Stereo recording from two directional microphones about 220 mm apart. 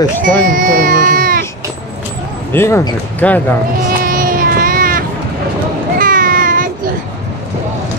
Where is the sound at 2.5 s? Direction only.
10° left (ahead or behind).